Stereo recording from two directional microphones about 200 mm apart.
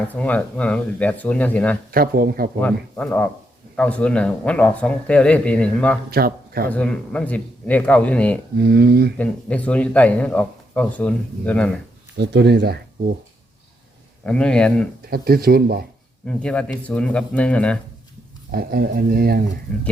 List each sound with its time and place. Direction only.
0.1 s speech: 5° left (ahead or behind)
1.9 s speech: 50° right (ahead or behind)
2.6 s speech: 10° left (ahead or behind)
6.1 s speech: 50° right (ahead or behind)
6.7 s speech: 5° left (ahead or behind)
8.5 s speech: 55° right (ahead or behind)
9.1 s speech: 5° left (ahead or behind)
12.1 s speech: 55° right (ahead or behind)
14.3 s speech: 5° left (ahead or behind)
15.1 s speech: 50° right (ahead or behind)
16.2 s speech: 5° left (ahead or behind)
18.5 s speech: 50° right (ahead or behind)